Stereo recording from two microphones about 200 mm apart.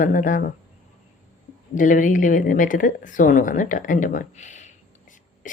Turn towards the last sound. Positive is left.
turn(degrees=35)  # may be behind; listen again after turning